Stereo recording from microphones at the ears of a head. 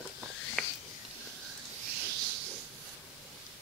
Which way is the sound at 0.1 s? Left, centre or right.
Left.